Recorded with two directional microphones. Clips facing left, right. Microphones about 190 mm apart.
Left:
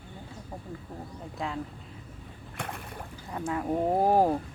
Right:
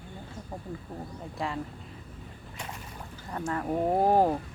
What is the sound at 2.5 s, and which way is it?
Boat, 60° left (ahead or behind).